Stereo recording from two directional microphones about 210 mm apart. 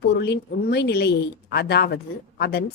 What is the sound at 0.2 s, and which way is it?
A woman's voice, 50° left (ahead or behind).